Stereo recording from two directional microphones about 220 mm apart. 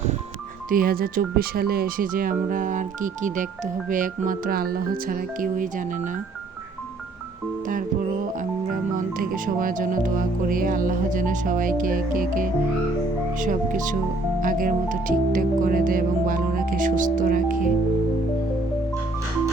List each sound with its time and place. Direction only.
0.7 s speech: 40° right (ahead or behind)
8.4 s speech: 40° right (ahead or behind)